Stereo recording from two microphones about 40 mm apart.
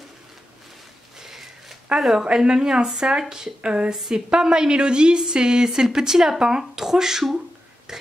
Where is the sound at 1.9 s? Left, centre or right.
Right.